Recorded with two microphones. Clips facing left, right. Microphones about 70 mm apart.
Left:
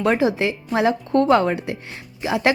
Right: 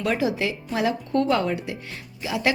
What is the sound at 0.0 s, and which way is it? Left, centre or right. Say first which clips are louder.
Speech: left 5 dB; left.